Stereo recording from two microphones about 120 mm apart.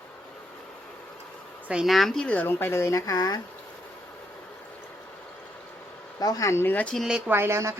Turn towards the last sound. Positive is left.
turn(degrees=-20)  # may be behind; listen again after turning